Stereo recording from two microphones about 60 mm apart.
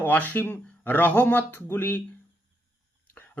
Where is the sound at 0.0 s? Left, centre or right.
Left.